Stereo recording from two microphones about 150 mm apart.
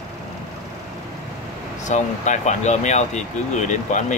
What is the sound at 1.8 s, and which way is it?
Speech, 50° left (ahead or behind).